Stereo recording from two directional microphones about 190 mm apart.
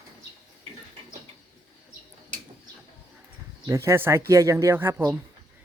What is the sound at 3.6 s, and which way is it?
Speech, 15° right (ahead or behind).